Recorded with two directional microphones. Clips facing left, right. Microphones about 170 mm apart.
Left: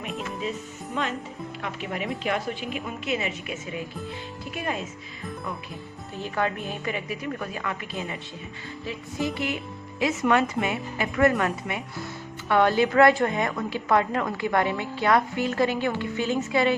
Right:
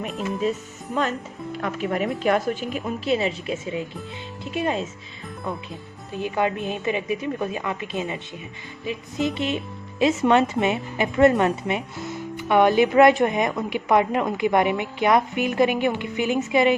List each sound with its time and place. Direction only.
1.0 s a woman's voice: 40° right (ahead or behind); by 4.9 s 25° right (ahead or behind)
6.1 s speech: 15° right (ahead or behind)